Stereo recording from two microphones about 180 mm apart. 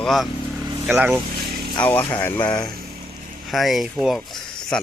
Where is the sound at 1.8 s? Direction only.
10° left (ahead or behind).